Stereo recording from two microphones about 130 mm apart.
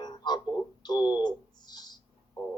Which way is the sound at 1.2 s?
35° left (ahead or behind).